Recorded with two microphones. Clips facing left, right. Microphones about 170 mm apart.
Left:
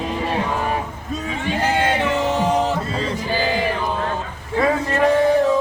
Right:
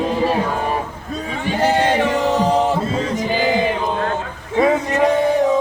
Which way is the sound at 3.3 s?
20° right (ahead or behind).